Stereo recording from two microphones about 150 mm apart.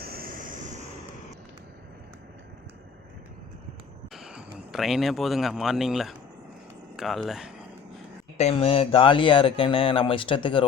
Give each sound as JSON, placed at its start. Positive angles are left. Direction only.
{"t": 0.0, "sound": "vehicle", "side_deg": -85}
{"t": 4.1, "sound": "vehicle", "side_deg": -5}
{"t": 4.7, "sound": "speech", "side_deg": 0}
{"t": 8.4, "sound": "speech", "side_deg": 45}